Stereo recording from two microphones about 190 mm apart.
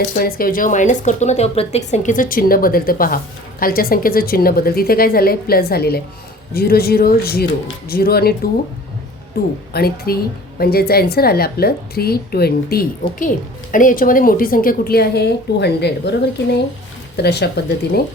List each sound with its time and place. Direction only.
0.0 s a woman's voice: 55° left (ahead or behind)
17.2 s speech: 60° left (ahead or behind)